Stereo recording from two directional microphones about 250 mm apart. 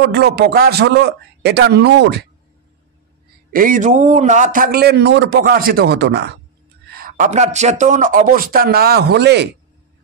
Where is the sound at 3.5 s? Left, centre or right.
Right.